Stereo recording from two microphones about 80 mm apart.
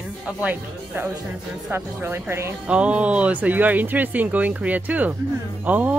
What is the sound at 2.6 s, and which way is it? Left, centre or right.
Speech, centre.